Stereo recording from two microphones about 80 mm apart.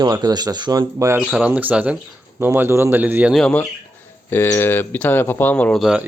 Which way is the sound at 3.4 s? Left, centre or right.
Centre.